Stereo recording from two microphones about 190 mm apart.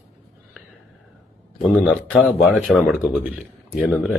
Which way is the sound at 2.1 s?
5° right (ahead or behind).